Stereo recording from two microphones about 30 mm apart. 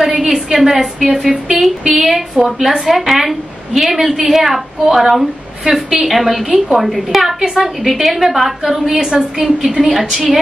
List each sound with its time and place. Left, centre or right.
0.2 s a woman's voice: centre
9.7 s a woman's voice: centre